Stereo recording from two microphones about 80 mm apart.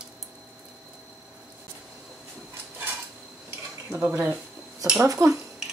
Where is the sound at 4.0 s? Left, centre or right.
Right.